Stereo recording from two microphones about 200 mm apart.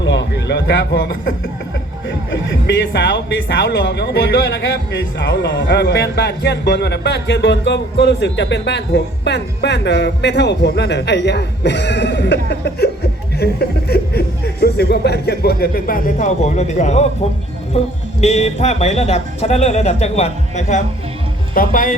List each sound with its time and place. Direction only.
0.0 s a man's voice: 65° left (ahead or behind); by 21.9 s 45° left (ahead or behind)